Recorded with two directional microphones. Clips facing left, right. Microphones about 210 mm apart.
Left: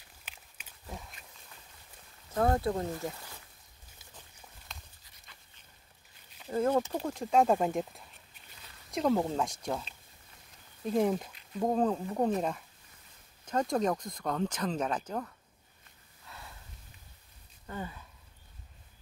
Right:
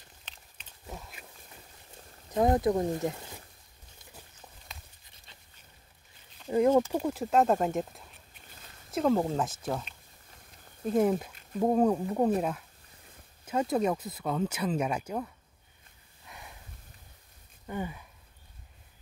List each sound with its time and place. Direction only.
0.3 s a sound: 10° left (ahead or behind)
2.3 s speech: 15° right (ahead or behind)
4.7 s horse: centre (ahead or behind)
6.5 s speech: 15° right (ahead or behind)
6.9 s speech: 5° right (ahead or behind)
11.0 s speech: 5° right (ahead or behind)
16.3 s a sound: 15° right (ahead or behind)
17.6 s speech: 15° right (ahead or behind)